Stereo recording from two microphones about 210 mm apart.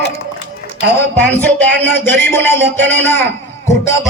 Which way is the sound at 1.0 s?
10° left (ahead or behind).